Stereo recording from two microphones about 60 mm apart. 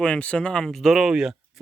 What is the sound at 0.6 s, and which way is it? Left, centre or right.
Speech, centre.